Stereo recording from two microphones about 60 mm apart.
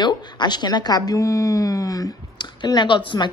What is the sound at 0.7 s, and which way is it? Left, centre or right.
Speech, left.